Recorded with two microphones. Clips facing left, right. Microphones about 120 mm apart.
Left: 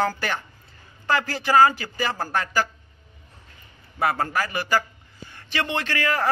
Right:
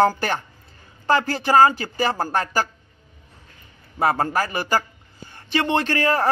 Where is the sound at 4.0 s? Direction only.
30° right (ahead or behind).